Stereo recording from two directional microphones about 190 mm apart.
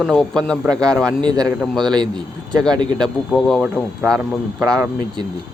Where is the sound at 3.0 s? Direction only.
5° left (ahead or behind).